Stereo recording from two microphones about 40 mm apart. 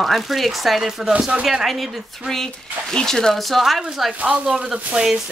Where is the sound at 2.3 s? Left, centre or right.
Centre.